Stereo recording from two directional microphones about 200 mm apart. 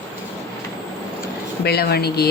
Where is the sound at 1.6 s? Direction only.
55° left (ahead or behind).